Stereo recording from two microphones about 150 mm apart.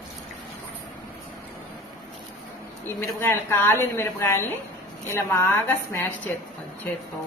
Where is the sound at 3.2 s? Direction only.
15° left (ahead or behind).